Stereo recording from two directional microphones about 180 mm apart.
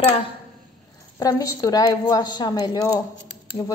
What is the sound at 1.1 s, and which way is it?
A woman's voice, 20° left (ahead or behind).